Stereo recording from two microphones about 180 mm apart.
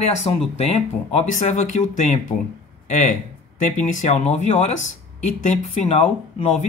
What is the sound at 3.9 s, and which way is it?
Speech, 35° left (ahead or behind).